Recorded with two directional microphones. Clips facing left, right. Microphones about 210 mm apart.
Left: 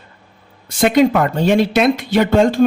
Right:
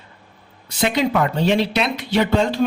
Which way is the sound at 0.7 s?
50° left (ahead or behind).